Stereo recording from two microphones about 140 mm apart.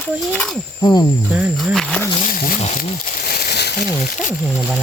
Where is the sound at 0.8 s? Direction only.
30° left (ahead or behind).